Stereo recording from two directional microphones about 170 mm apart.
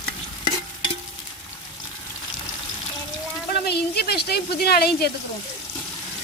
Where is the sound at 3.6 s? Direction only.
75° left (ahead or behind).